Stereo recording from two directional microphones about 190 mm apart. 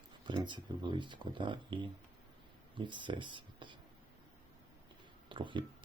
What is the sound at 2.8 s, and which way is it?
Speech, 25° right (ahead or behind).